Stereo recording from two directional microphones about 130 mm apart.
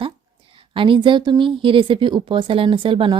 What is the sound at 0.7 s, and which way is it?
A woman's voice, 40° right (ahead or behind).